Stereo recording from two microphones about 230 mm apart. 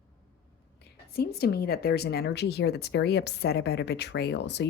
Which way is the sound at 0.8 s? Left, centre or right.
Left.